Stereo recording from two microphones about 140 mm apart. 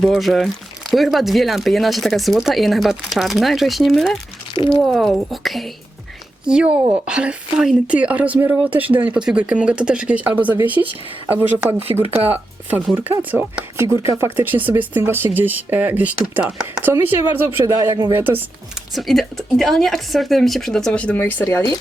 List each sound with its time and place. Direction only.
0.0 s speech: centre (ahead or behind)
17.7 s speech: 30° right (ahead or behind)
18.1 s speech: 15° right (ahead or behind)
18.9 s speech: centre (ahead or behind); by 21.8 s 20° left (ahead or behind)